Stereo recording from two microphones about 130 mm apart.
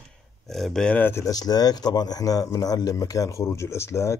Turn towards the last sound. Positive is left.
turn(degrees=20)  # may be behind; listen again after turning